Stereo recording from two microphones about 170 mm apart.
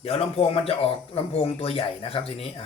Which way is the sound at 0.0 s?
35° left (ahead or behind).